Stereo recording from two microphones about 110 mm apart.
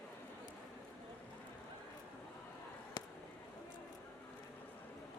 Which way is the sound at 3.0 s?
35° left (ahead or behind).